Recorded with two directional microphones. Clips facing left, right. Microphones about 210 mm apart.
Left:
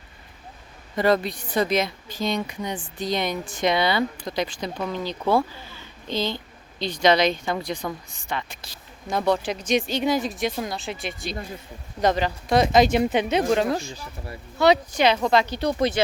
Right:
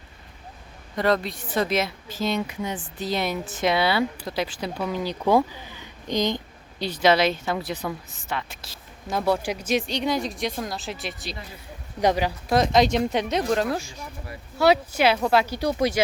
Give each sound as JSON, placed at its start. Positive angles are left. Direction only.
{"t": 0.9, "sound": "speech", "side_deg": 0}
{"t": 11.9, "sound": "speech", "side_deg": -10}
{"t": 12.5, "sound": "speech", "side_deg": 0}
{"t": 13.9, "sound": "speech", "side_deg": 30}
{"t": 14.6, "sound": "speech", "side_deg": -5}